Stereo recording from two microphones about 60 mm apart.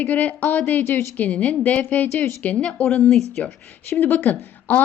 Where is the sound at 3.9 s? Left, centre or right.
Left.